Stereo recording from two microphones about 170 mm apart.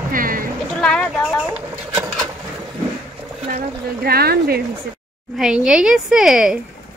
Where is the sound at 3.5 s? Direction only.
65° right (ahead or behind).